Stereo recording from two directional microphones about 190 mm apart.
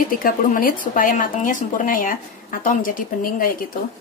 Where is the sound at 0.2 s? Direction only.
45° left (ahead or behind).